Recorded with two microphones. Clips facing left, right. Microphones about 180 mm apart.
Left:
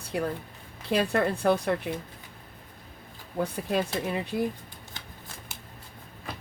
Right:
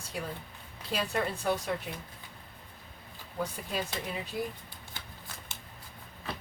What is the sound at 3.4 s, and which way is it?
Speech, 60° left (ahead or behind).